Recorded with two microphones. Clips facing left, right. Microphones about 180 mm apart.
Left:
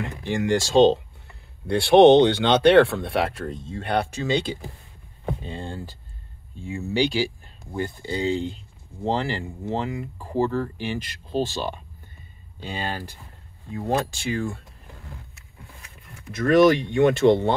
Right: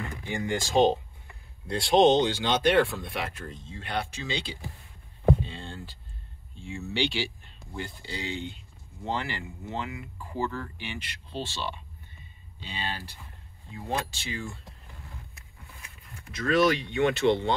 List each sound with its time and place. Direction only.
0.2 s speech: 80° left; by 4.6 s 50° left (ahead or behind)
5.4 s a sound: 45° left (ahead or behind)
6.7 s speech: 40° left (ahead or behind)
8.3 s speech: 35° left (ahead or behind); by 14.6 s 50° left (ahead or behind)
16.3 s speech: 50° left (ahead or behind)